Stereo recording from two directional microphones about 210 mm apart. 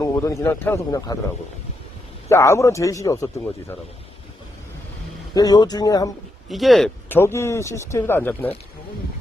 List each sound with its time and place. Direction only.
0.0 s speech: 15° left (ahead or behind)
2.3 s speech: 15° left (ahead or behind)
5.3 s speech: 20° left (ahead or behind)
6.5 s speech: centre (ahead or behind)